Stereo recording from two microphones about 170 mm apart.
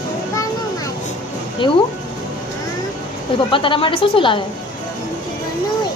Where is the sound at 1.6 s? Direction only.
30° left (ahead or behind).